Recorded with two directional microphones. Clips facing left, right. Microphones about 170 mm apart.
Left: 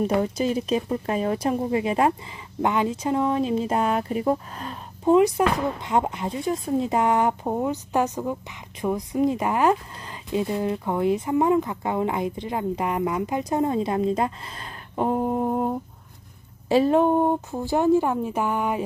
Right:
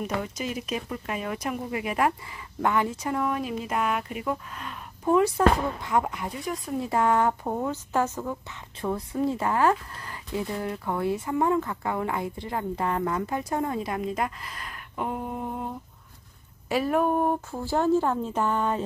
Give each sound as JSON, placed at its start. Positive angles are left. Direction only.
{"t": 0.2, "sound": "speech", "side_deg": 30}
{"t": 5.0, "sound": "speech", "side_deg": 20}
{"t": 16.6, "sound": "speech", "side_deg": 25}